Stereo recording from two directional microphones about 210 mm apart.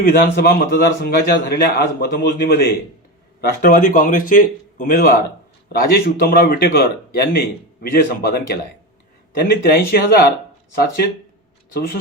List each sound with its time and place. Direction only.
0.0 s a man's voice: 45° left (ahead or behind)